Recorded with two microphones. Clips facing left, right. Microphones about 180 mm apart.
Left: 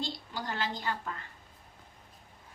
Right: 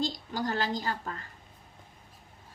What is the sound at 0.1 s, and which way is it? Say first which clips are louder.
A woman's voice: right 6 dB; 45° right (ahead or behind).